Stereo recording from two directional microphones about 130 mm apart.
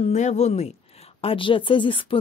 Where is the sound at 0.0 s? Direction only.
65° left (ahead or behind).